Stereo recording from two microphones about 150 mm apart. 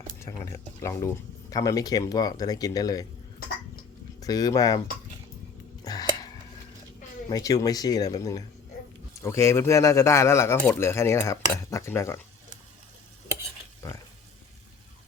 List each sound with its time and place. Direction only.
0.2 s speech: 20° left (ahead or behind)
4.2 s speech: 25° left (ahead or behind)
5.8 s a sound: 25° left (ahead or behind)
7.3 s speech: 25° left (ahead or behind)